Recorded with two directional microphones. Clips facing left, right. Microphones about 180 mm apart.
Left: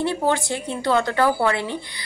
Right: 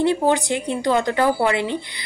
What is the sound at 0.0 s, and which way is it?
A woman's voice, 15° right (ahead or behind).